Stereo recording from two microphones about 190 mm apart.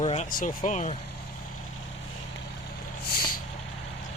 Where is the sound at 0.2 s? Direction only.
45° left (ahead or behind).